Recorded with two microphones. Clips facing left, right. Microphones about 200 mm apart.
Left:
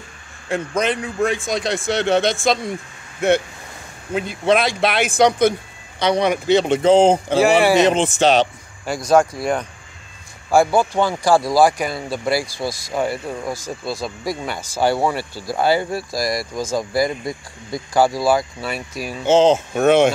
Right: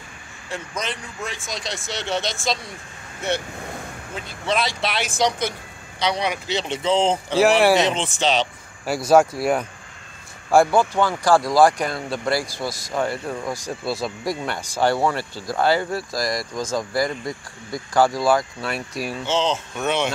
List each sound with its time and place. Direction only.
0.5 s speech: 55° left (ahead or behind)
4.1 s speech: 55° left (ahead or behind)
8.8 s speech: 5° right (ahead or behind)
19.2 s speech: 50° left (ahead or behind)